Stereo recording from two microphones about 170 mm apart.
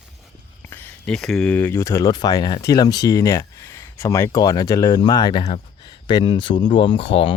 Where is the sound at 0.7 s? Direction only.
10° left (ahead or behind).